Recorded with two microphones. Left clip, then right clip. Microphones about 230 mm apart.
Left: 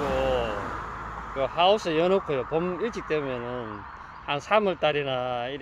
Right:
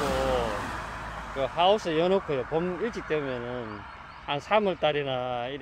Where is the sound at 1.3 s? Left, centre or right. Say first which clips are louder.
Left 1 dB; centre.